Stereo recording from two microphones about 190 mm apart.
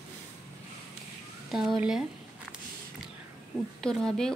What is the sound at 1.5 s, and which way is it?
Speech, 5° right (ahead or behind).